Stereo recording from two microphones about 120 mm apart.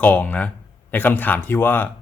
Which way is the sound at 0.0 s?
15° left (ahead or behind).